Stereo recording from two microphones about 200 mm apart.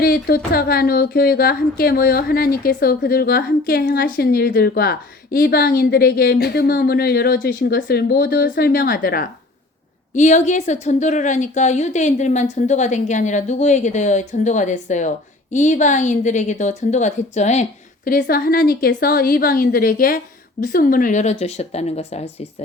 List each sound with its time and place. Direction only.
0.0 s speech: 50° left (ahead or behind)
10.2 s a woman's voice: 35° left (ahead or behind)